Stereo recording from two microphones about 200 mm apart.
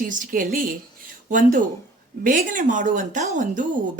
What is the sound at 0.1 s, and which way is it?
A woman's voice, 40° right (ahead or behind).